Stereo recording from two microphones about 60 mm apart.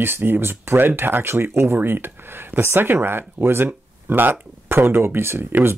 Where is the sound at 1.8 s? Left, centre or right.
Right.